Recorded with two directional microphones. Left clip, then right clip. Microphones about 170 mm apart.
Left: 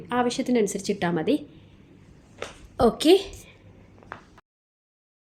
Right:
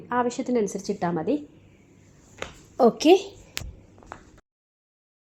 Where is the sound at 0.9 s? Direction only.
5° left (ahead or behind).